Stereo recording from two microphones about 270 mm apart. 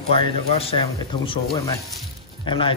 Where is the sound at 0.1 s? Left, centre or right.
Left.